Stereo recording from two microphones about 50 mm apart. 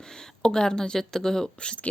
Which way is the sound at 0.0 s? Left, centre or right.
Centre.